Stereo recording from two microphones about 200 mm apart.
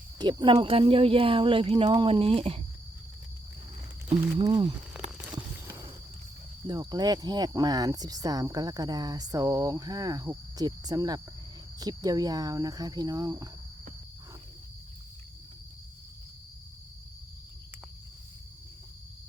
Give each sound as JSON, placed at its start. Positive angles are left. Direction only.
{"t": 0.2, "sound": "speech", "side_deg": -20}
{"t": 4.1, "sound": "speech", "side_deg": -20}
{"t": 6.7, "sound": "speech", "side_deg": -20}